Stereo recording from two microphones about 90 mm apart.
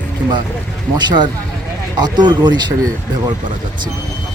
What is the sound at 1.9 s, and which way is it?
Speech, 55° right (ahead or behind).